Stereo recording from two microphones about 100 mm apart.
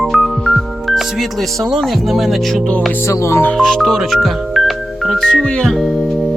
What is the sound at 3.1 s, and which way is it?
Music, 30° left (ahead or behind).